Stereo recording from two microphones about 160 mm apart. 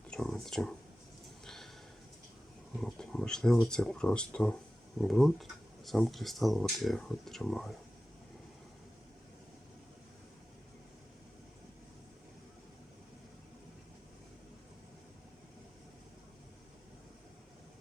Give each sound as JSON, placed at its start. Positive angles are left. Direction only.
{"t": 0.1, "sound": "speech", "side_deg": 0}
{"t": 1.5, "sound": "a sound", "side_deg": 0}
{"t": 2.8, "sound": "speech", "side_deg": 5}